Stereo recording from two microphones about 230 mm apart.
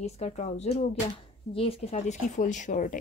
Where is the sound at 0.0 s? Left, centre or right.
Left.